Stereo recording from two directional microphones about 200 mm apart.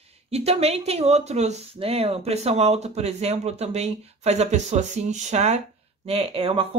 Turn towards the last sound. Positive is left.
turn(degrees=-30)  # may be behind; listen again after turning